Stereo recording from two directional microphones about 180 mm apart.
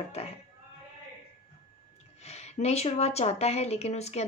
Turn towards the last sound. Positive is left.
turn(degrees=35)  # may be behind; listen again after turning